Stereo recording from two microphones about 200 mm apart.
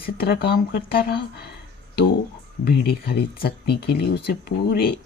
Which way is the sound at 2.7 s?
50° left (ahead or behind).